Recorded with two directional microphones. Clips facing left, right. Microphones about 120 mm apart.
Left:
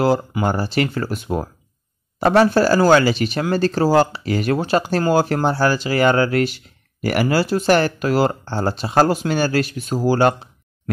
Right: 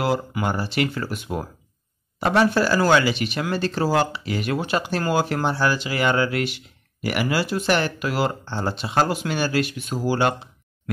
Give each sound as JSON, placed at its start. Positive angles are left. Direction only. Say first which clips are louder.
{"t": 0.0, "sound": "speech", "louder": "left 5 dB", "side_deg": 35}